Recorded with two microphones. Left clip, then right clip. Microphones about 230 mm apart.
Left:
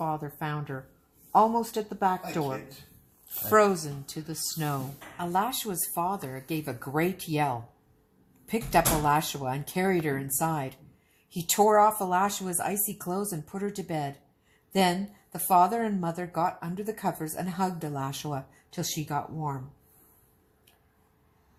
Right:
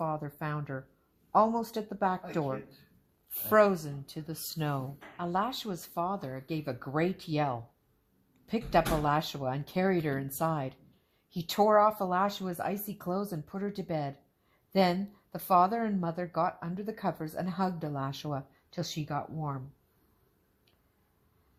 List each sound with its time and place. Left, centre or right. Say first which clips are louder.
0.0 s a woman's voice: left 3 dB; right